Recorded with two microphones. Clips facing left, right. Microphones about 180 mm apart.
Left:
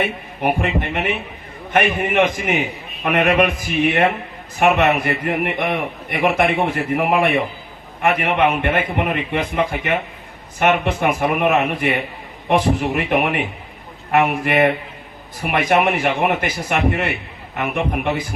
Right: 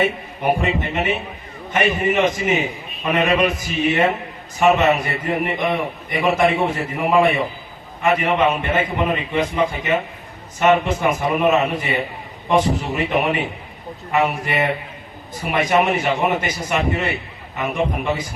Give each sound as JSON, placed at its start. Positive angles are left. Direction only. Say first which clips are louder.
{"t": 0.6, "sound": "a man's voice", "louder": "even", "side_deg": 60}